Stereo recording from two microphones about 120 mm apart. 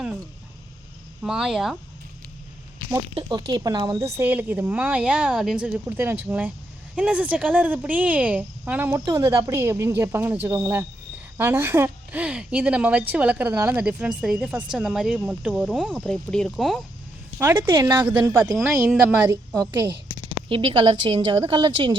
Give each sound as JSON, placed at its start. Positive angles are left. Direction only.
{"t": 1.2, "sound": "speech", "side_deg": -5}
{"t": 3.2, "sound": "speech", "side_deg": -45}
{"t": 3.9, "sound": "speech", "side_deg": -20}
{"t": 9.0, "sound": "speech", "side_deg": -25}
{"t": 17.4, "sound": "speech", "side_deg": -20}
{"t": 18.9, "sound": "speech", "side_deg": -10}
{"t": 20.5, "sound": "a woman's voice", "side_deg": -45}